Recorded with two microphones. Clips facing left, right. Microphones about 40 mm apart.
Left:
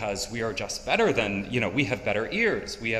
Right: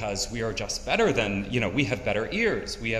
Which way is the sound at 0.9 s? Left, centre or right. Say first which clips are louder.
Even; centre.